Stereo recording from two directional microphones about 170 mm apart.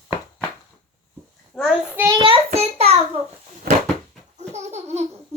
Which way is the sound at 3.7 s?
65° right (ahead or behind).